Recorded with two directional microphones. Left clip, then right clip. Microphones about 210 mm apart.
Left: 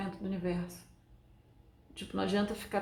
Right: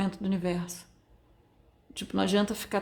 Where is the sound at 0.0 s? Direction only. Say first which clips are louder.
Right 6 dB; 45° right (ahead or behind).